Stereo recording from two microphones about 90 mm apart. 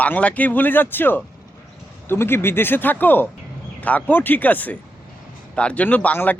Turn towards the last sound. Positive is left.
turn(degrees=20)  # may be behind; listen again after turning